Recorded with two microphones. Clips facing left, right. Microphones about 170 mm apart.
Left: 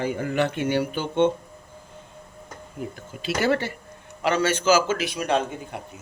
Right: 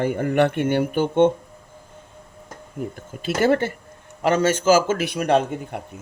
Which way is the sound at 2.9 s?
50° right (ahead or behind).